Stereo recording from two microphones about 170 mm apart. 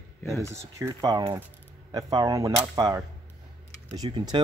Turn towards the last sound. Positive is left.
turn(degrees=-25)  # may be behind; listen again after turning